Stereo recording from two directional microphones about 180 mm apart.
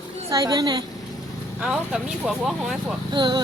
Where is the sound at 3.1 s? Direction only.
25° right (ahead or behind).